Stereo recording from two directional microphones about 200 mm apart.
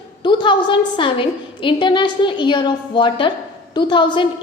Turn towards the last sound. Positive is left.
turn(degrees=25)  # may be behind; listen again after turning